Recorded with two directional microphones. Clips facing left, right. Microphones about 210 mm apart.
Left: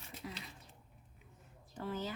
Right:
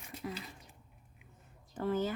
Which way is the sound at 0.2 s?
55° right (ahead or behind).